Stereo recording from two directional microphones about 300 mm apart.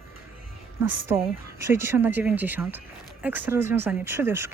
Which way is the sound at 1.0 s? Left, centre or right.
Centre.